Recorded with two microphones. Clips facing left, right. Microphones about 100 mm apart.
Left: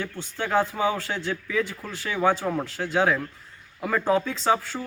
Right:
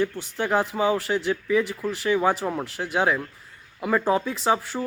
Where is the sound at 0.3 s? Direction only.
15° right (ahead or behind).